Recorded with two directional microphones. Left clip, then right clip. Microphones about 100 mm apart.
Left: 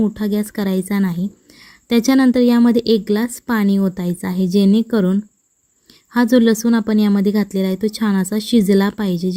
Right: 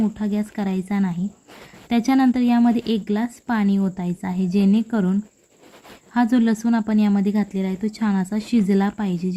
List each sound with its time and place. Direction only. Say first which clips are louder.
0.2 s a woman's voice: left 5 dB; 40° left (ahead or behind)